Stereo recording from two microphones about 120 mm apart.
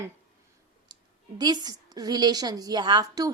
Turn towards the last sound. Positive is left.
turn(degrees=-30)  # may be behind; listen again after turning